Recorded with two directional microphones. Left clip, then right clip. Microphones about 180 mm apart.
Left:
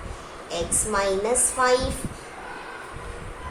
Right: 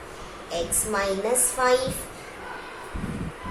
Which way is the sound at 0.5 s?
20° left (ahead or behind).